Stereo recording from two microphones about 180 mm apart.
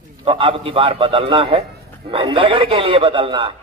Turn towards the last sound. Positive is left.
turn(degrees=-30)  # may be behind; listen again after turning